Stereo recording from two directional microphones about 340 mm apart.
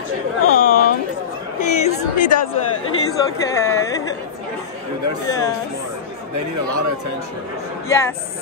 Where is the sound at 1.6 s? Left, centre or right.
Centre.